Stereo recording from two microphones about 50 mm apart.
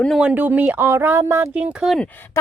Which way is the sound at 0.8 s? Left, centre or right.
Right.